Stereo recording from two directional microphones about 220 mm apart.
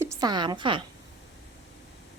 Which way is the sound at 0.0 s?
15° right (ahead or behind).